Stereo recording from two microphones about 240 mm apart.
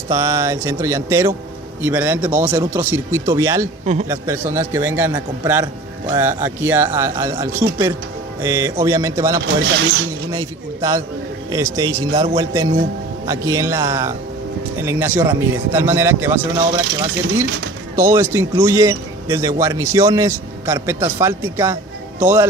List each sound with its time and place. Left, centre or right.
0.1 s a man's voice: centre
9.7 s speech: right
10.3 s a man's voice: centre
16.8 s speech: right
17.9 s a man's voice: centre